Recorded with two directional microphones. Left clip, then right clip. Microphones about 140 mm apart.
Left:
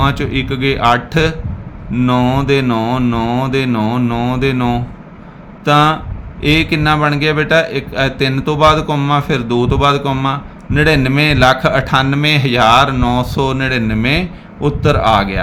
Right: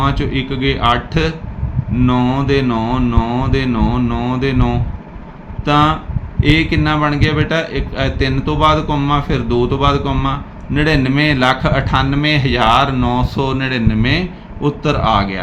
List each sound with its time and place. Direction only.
0.0 s mantra: 45° left (ahead or behind)
5.6 s a man's voice: 40° left (ahead or behind)